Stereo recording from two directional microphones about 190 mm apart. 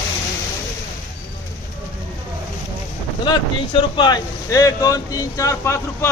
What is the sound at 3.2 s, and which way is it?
Speech, 25° left (ahead or behind).